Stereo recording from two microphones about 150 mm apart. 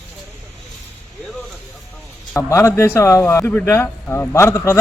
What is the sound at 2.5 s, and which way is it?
Speech, 20° left (ahead or behind).